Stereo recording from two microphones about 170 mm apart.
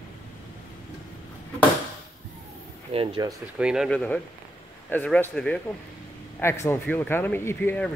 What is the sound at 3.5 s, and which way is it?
Speech, 5° right (ahead or behind).